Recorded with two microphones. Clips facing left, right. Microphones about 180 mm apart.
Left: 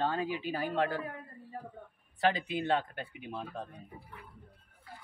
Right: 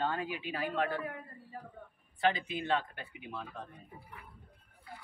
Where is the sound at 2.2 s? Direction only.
35° left (ahead or behind).